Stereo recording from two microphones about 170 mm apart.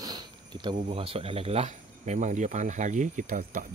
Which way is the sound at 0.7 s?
40° right (ahead or behind).